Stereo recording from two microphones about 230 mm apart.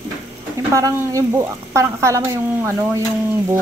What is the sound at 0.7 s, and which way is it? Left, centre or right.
Speech, centre.